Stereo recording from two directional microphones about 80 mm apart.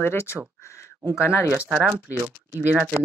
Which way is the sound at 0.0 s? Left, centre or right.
Left.